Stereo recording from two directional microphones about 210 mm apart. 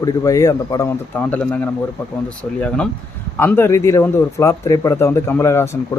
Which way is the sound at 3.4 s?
10° left (ahead or behind).